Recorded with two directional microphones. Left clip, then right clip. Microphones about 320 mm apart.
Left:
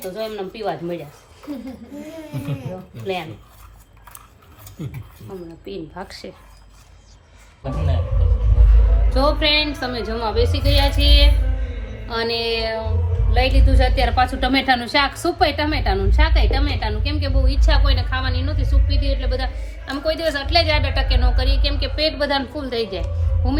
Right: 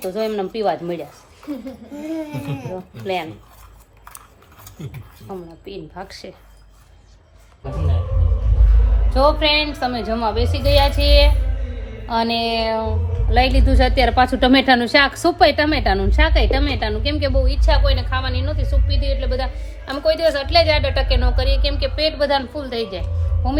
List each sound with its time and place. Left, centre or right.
0.2 s a woman's voice: right
4.8 s speech: centre
5.6 s a woman's voice: centre
9.1 s a woman's voice: centre
13.3 s a woman's voice: right
17.4 s a woman's voice: centre